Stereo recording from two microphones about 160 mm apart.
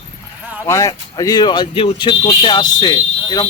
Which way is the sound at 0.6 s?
20° left (ahead or behind).